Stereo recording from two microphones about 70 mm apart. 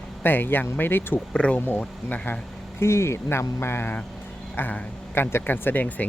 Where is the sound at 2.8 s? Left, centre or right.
Left.